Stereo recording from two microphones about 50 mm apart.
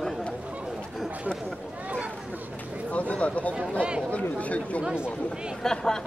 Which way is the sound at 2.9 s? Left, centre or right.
Left.